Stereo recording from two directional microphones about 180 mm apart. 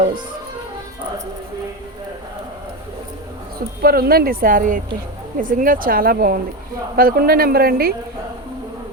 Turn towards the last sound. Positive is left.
turn(degrees=-55)  # may be behind; listen again after turning